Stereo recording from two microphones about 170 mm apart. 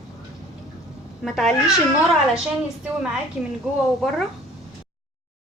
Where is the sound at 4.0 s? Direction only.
Centre (ahead or behind).